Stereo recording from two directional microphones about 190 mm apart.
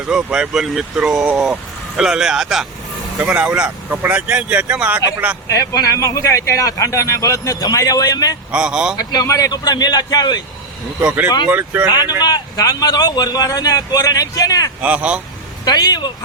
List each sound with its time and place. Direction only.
0.1 s speech: 5° right (ahead or behind)
5.5 s speech: 15° left (ahead or behind)
8.5 s speech: 5° right (ahead or behind)
9.0 s speech: 20° left (ahead or behind)
11.0 s speech: 5° right (ahead or behind)
11.9 s speech: 20° left (ahead or behind)
14.8 s speech: 5° right (ahead or behind)
15.6 s speech: 20° left (ahead or behind)